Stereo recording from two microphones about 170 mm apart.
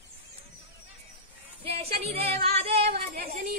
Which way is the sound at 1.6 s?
35° right (ahead or behind).